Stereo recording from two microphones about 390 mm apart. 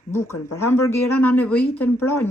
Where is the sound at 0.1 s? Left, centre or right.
Centre.